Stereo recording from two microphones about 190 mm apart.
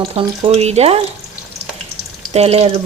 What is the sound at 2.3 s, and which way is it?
Speech, 30° right (ahead or behind).